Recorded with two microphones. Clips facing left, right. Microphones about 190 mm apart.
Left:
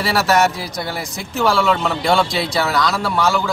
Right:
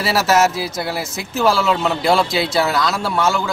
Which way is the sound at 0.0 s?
Centre (ahead or behind).